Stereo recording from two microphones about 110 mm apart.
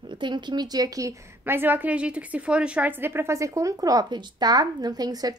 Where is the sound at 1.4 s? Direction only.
15° right (ahead or behind).